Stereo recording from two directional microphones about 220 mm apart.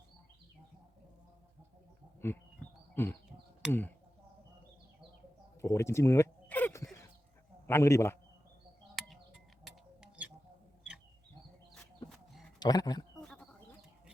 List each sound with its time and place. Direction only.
2.2 s a man's voice: 10° left (ahead or behind)
3.7 s chop: 10° left (ahead or behind)
5.6 s a sound: 15° left (ahead or behind)
7.7 s a man's voice: 10° left (ahead or behind)
9.0 s music: centre (ahead or behind)
12.0 s a sound: centre (ahead or behind)
12.5 s speech: 20° left (ahead or behind)
13.2 s goat: 5° left (ahead or behind)